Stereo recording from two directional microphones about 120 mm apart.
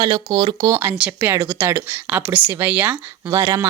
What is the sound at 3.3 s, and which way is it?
Speech, 30° right (ahead or behind).